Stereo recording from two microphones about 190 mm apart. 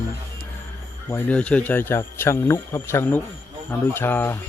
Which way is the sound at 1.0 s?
10° left (ahead or behind).